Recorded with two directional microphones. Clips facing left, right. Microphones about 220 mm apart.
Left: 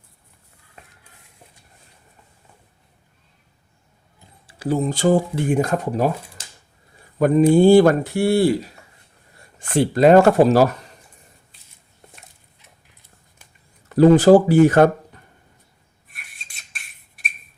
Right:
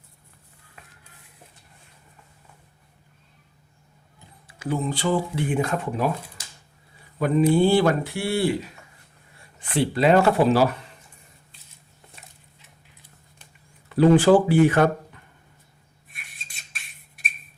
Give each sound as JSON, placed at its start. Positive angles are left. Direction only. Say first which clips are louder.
{"t": 4.4, "sound": "speech", "louder": "left 5 dB", "side_deg": 35}
{"t": 7.2, "sound": "speech", "louder": "left 5 dB", "side_deg": 45}
{"t": 13.9, "sound": "speech", "louder": "left 4 dB", "side_deg": 40}
{"t": 16.0, "sound": "a sound", "louder": "left 1 dB", "side_deg": 0}